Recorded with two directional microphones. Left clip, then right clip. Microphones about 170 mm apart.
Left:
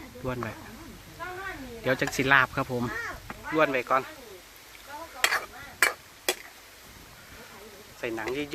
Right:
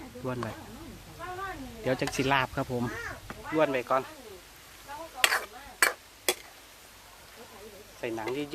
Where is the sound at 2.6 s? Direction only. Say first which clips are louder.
Left 2 dB; 15° left (ahead or behind).